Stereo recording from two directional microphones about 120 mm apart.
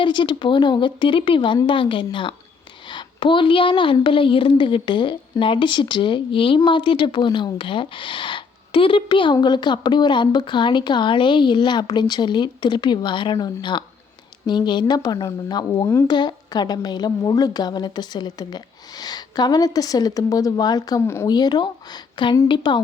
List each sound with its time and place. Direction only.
0.0 s a woman's voice: 40° left (ahead or behind)
21.0 s speech: 20° left (ahead or behind)
21.2 s speech: 35° left (ahead or behind)